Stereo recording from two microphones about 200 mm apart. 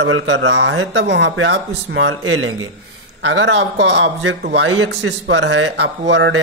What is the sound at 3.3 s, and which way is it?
A man's voice, 65° right (ahead or behind).